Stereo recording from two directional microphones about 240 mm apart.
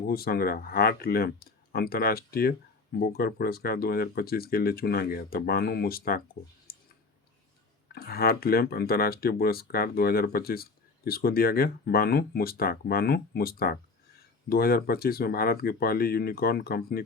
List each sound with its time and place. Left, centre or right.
0.0 s speech: left
6.7 s clicking: left
7.9 s speech: left